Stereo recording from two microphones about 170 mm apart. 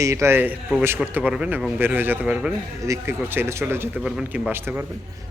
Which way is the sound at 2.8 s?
15° right (ahead or behind).